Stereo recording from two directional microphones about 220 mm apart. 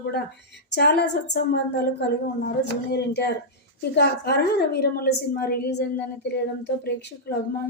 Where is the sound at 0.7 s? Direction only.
50° left (ahead or behind).